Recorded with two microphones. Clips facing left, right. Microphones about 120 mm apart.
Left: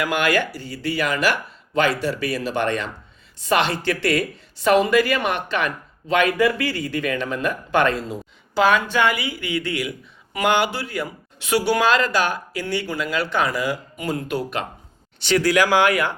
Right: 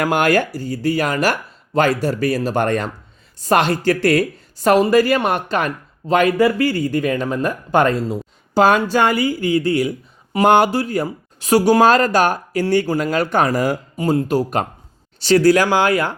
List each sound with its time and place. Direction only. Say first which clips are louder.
0.0 s speech: right 5 dB; 45° right (ahead or behind)